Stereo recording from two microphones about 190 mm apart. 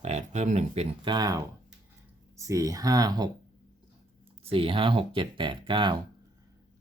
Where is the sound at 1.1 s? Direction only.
20° right (ahead or behind).